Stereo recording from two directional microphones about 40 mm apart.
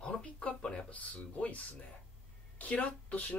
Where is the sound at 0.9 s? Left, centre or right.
Left.